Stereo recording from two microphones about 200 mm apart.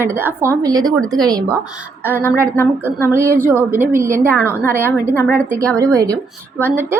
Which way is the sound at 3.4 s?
10° right (ahead or behind).